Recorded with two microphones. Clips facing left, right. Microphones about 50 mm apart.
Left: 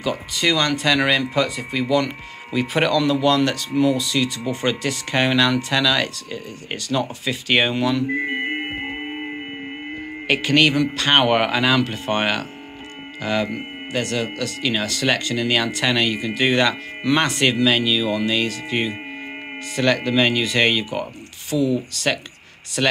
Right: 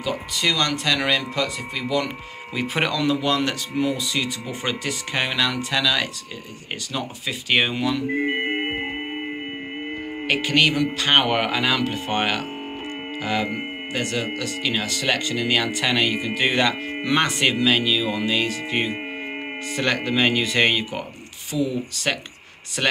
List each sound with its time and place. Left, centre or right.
0.0 s speech: centre
2.5 s speech: centre
8.3 s music: centre
10.2 s speech: centre
14.6 s speech: centre